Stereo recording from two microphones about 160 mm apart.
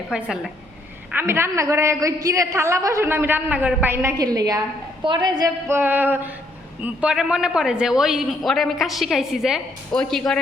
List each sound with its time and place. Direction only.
0.1 s a man's voice: 5° right (ahead or behind)